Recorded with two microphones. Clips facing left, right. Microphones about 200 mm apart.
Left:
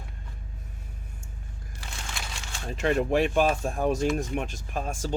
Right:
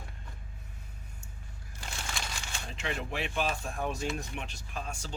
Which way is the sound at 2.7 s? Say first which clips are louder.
Left 13 dB; 50° left (ahead or behind).